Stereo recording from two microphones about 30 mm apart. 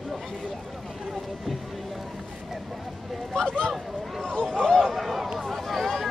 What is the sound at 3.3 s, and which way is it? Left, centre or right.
Speech, left.